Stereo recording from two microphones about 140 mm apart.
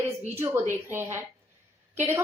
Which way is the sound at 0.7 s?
15° right (ahead or behind).